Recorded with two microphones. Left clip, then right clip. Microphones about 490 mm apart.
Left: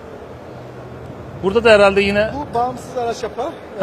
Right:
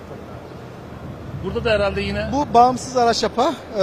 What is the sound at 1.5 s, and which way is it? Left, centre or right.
Speech, left.